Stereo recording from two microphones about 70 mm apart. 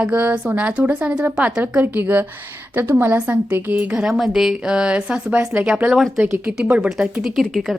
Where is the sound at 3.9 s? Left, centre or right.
Centre.